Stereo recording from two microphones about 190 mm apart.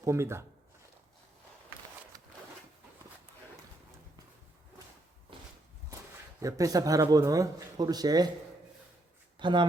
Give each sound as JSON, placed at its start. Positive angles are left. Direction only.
{"t": 0.0, "sound": "speech", "side_deg": -15}
{"t": 6.4, "sound": "speech", "side_deg": -20}
{"t": 9.4, "sound": "speech", "side_deg": -25}